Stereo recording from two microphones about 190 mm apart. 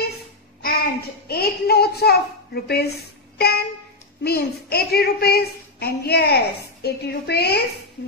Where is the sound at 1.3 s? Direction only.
55° left (ahead or behind).